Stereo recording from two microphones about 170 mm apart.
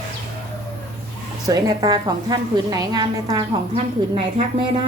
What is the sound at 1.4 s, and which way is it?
A woman's voice, 20° right (ahead or behind).